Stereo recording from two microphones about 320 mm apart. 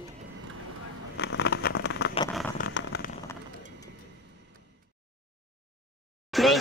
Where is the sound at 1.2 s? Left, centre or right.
Left.